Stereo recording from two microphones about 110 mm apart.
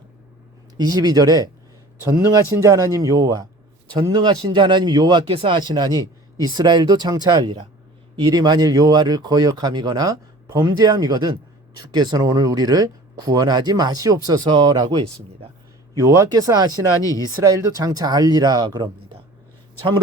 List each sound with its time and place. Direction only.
0.8 s speech: 35° right (ahead or behind)
5.3 s speech: 60° right (ahead or behind)
5.5 s speech: 40° right (ahead or behind)
17.0 s speech: 30° left (ahead or behind)
17.2 s speech: 35° right (ahead or behind)